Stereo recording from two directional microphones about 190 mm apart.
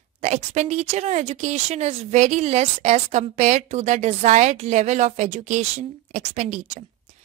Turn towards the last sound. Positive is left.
turn(degrees=-35)  # may be behind; listen again after turning